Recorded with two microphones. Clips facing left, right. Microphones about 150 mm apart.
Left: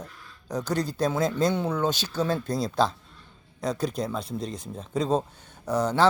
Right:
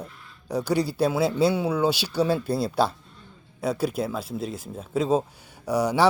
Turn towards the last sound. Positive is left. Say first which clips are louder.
# right 1 dB
turn(degrees=-10)  # may be behind; listen again after turning